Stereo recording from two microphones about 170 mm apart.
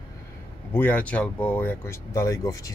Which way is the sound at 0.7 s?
10° left (ahead or behind).